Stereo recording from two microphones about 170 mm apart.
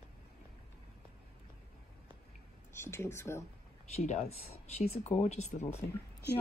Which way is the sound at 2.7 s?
15° left (ahead or behind).